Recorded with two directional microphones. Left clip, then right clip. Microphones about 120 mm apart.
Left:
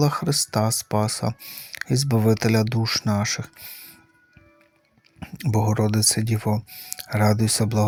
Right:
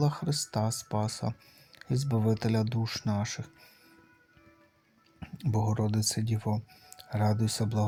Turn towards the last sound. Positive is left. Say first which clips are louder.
# left 9 dB
turn(degrees=40)  # may be behind; listen again after turning